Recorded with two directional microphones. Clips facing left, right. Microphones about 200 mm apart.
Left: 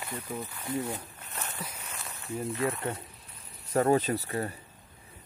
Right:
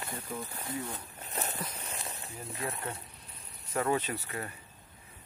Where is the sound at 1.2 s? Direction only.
35° right (ahead or behind).